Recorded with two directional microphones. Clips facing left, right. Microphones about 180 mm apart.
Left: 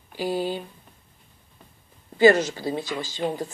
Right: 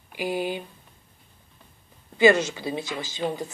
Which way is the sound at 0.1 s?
15° right (ahead or behind).